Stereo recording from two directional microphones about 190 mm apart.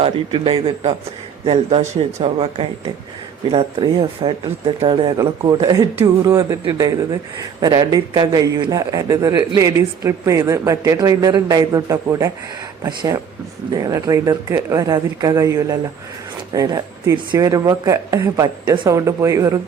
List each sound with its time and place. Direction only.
0.0 s a man's voice: 25° right (ahead or behind)